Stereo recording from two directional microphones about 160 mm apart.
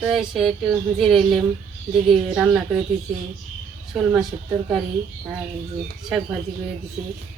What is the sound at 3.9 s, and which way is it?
Speech, 5° right (ahead or behind).